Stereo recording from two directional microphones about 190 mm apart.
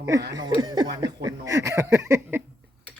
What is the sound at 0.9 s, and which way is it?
Chuckle, 20° right (ahead or behind).